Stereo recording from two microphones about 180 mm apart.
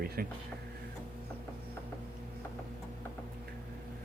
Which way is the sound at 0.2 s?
60° right (ahead or behind).